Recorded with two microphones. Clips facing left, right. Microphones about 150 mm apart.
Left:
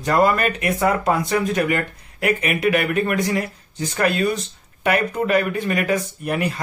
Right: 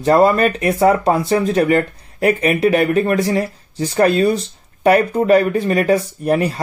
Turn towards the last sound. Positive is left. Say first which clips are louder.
# right 6 dB
turn(degrees=-35)  # may be behind; listen again after turning